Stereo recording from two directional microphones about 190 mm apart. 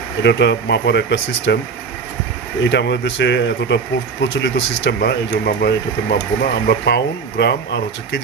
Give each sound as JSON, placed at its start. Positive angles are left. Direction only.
{"t": 0.2, "sound": "speech", "side_deg": 65}
{"t": 2.6, "sound": "speech", "side_deg": 65}